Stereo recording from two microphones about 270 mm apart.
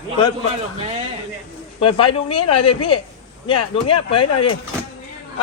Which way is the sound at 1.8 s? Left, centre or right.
Centre.